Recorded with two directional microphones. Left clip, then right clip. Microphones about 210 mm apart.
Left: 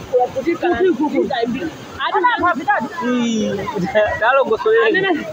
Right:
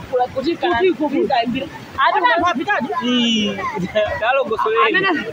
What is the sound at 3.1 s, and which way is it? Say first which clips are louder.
Speech: right 2 dB; 5° left (ahead or behind).